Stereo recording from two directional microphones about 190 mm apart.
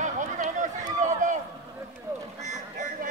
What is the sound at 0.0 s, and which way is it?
Run, 40° right (ahead or behind).